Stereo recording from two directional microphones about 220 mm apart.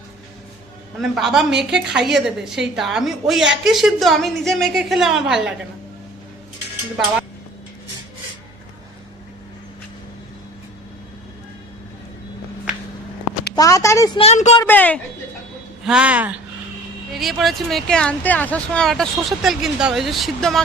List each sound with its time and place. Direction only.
0.9 s speech: centre (ahead or behind)
13.6 s a woman's voice: 15° left (ahead or behind); by 14.6 s 30° left (ahead or behind)
14.6 s a woman's voice: 10° left (ahead or behind)
15.8 s speech: 5° right (ahead or behind)